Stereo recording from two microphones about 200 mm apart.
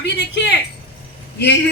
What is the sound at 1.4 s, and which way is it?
Speech, 55° left (ahead or behind).